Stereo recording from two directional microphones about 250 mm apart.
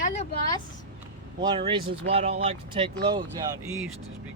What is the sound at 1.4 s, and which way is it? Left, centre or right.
Speech, right.